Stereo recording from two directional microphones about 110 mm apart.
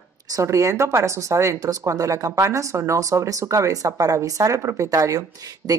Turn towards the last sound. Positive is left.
turn(degrees=-35)  # may be behind; listen again after turning